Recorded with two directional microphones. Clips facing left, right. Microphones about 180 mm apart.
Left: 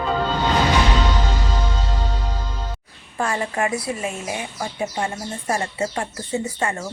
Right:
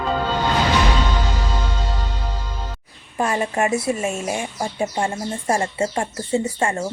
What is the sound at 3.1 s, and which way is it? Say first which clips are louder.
A woman's voice: right 2 dB; 20° right (ahead or behind).